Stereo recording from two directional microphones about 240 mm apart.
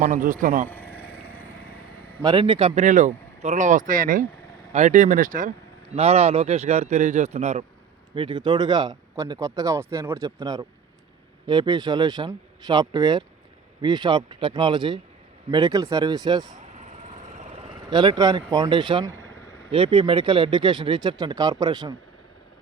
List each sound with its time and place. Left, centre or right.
0.0 s speech: right
0.7 s vehicle: centre
2.2 s speech: right
17.7 s speech: centre